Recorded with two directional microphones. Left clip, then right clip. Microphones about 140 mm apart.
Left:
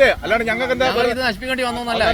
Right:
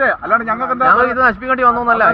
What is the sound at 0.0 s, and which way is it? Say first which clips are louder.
Speech: right 1 dB; 65° right (ahead or behind).